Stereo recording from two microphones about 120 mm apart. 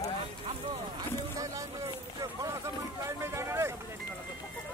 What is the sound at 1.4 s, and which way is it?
Speech, 25° right (ahead or behind).